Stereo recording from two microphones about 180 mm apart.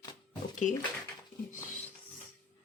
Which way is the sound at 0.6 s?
45° left (ahead or behind).